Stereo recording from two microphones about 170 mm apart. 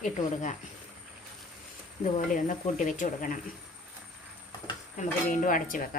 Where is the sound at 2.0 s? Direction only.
50° left (ahead or behind).